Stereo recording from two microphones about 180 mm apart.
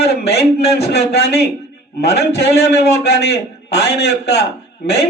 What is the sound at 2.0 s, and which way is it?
Speech, 65° left (ahead or behind).